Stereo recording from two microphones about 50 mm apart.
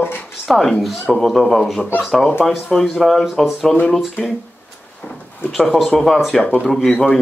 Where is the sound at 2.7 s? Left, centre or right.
Centre.